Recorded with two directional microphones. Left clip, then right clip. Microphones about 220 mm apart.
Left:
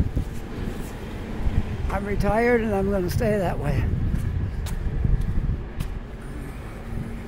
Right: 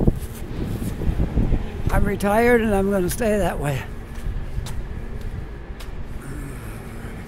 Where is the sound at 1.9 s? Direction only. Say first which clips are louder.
Right 4 dB; 20° right (ahead or behind).